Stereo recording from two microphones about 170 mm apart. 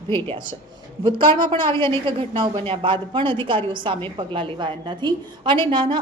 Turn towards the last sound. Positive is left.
turn(degrees=-30)  # may be behind; listen again after turning